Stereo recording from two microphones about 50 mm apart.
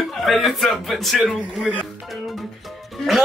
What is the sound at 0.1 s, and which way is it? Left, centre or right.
A man's voice, centre.